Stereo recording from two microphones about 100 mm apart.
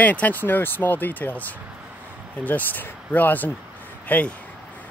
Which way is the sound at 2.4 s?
15° left (ahead or behind).